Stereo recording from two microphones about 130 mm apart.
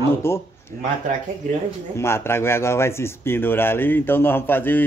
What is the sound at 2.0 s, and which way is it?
A man's voice, 20° left (ahead or behind).